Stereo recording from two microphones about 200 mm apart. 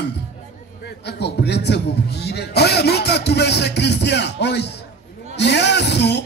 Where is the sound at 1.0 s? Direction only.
55° left (ahead or behind).